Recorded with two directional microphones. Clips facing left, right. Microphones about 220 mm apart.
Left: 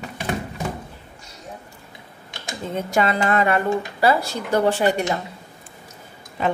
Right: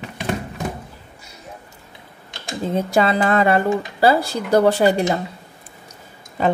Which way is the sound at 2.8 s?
35° right (ahead or behind).